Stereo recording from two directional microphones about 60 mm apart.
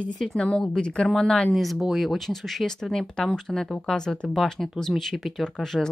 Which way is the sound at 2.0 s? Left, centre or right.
Centre.